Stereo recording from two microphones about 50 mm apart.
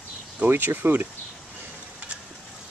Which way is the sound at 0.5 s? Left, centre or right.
Right.